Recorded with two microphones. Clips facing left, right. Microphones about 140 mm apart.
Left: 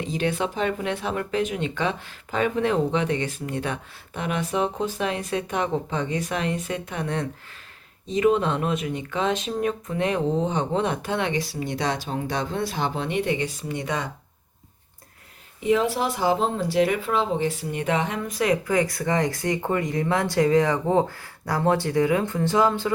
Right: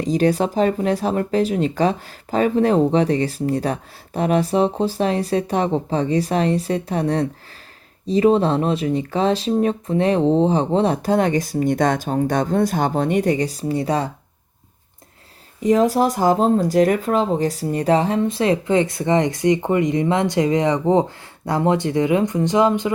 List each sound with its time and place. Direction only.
0.0 s speech: 40° right (ahead or behind)
15.6 s speech: 40° right (ahead or behind); by 22.9 s 20° right (ahead or behind)